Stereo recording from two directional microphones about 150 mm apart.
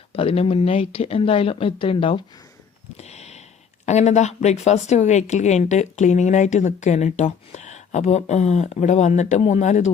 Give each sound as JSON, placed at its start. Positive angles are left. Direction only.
{"t": 0.1, "sound": "speech", "side_deg": 40}
{"t": 3.0, "sound": "a sound", "side_deg": 45}
{"t": 3.8, "sound": "a woman's voice", "side_deg": 50}